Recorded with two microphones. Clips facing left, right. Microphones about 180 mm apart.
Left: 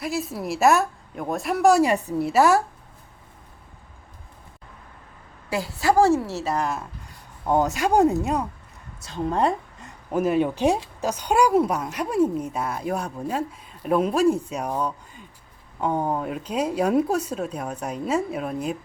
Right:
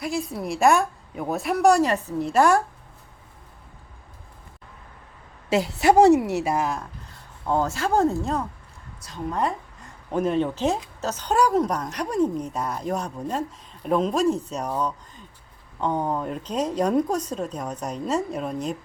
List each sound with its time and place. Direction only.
0.0 s a woman's voice: centre (ahead or behind)
5.5 s a woman's voice: 20° right (ahead or behind)
7.4 s speech: 15° left (ahead or behind)
9.0 s a woman's voice: 25° left (ahead or behind)
10.1 s speech: 5° left (ahead or behind)